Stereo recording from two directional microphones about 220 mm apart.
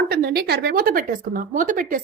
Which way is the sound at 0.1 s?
45° right (ahead or behind).